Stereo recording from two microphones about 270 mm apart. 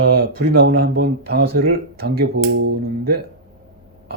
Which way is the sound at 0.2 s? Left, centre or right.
Right.